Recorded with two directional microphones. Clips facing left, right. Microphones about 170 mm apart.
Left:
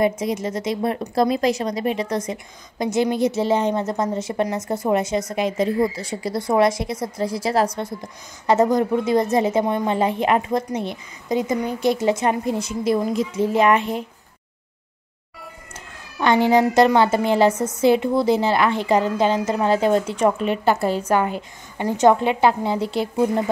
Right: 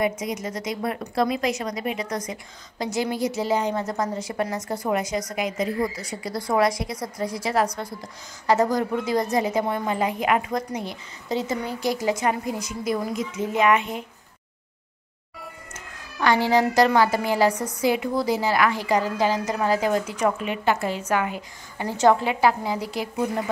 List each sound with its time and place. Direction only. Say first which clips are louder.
0.2 s a woman's voice: left 5 dB; 25° left (ahead or behind)
16.2 s a woman's voice: left 4 dB; 20° left (ahead or behind)